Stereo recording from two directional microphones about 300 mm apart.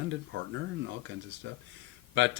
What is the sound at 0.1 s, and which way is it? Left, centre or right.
Speech, right.